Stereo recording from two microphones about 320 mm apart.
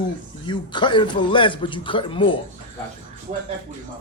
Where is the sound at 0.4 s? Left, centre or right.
Centre.